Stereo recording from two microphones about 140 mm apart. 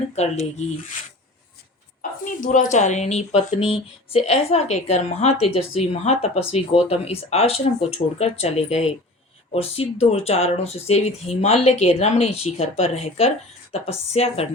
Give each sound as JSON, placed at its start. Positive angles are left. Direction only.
{"t": 0.2, "sound": "a woman's voice", "side_deg": 50}
{"t": 2.0, "sound": "a woman's voice", "side_deg": 70}